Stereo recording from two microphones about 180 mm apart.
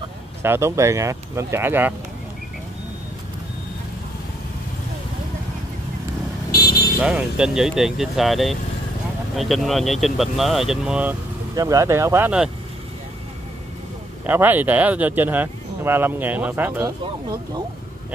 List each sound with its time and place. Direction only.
0.4 s speech: 15° right (ahead or behind)
7.0 s speech: 5° right (ahead or behind)
11.5 s speech: 20° right (ahead or behind)
14.2 s speech: 10° right (ahead or behind)